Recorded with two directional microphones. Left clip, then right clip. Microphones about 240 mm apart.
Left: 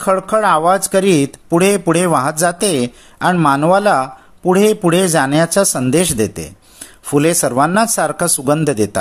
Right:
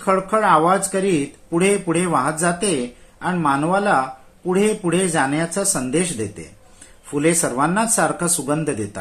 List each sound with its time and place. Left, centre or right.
0.0 s speech: left